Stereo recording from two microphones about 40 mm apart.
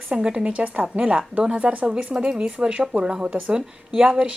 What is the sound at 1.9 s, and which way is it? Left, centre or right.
Speech, right.